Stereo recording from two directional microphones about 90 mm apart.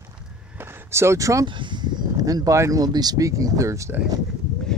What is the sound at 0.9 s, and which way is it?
Speech, 30° right (ahead or behind).